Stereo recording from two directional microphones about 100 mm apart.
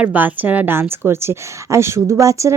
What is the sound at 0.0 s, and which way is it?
Speech, 15° right (ahead or behind).